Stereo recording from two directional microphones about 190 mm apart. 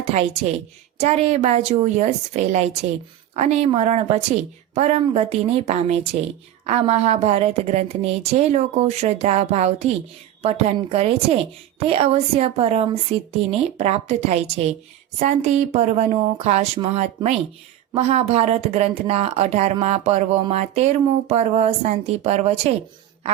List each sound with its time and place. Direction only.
0.1 s a woman's voice: 35° right (ahead or behind)